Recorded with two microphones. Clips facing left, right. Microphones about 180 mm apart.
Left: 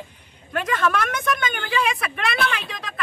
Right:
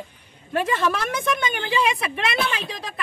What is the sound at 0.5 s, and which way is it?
Speech, 30° right (ahead or behind).